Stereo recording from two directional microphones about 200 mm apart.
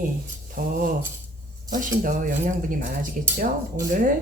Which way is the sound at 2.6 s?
40° right (ahead or behind).